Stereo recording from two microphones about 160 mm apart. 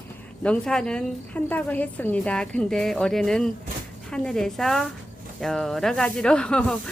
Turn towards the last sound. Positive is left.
turn(degrees=5)  # may be behind; listen again after turning